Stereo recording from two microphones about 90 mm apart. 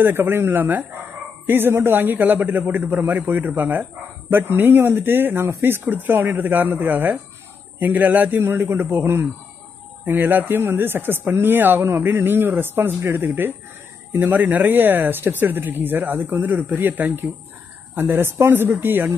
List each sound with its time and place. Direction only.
0.0 s speech: 25° right (ahead or behind)